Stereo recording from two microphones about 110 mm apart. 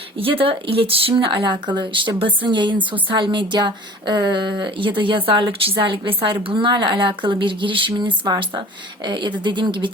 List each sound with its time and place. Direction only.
0.2 s speech: 55° right (ahead or behind)